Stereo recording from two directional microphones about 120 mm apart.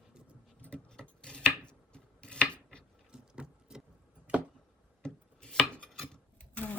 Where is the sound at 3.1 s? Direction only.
5° right (ahead or behind).